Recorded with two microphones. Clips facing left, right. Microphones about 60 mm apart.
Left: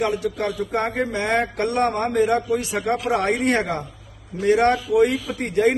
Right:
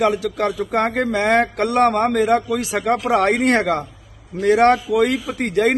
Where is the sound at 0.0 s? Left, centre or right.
Right.